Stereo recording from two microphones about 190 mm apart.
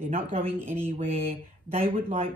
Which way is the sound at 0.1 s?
30° right (ahead or behind).